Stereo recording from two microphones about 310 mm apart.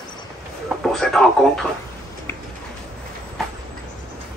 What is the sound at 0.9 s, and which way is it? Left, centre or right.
Speech, centre.